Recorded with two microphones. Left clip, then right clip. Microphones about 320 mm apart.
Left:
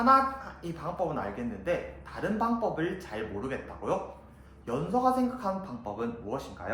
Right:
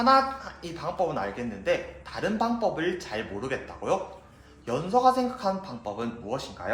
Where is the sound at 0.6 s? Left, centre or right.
Right.